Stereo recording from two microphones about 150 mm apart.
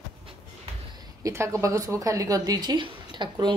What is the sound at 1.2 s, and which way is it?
A woman's voice, 20° right (ahead or behind).